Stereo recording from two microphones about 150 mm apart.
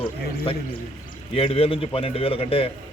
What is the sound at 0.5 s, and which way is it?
A man's voice, 40° left (ahead or behind).